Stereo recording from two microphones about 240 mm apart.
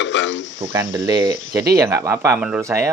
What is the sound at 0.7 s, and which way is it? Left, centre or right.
Speech, centre.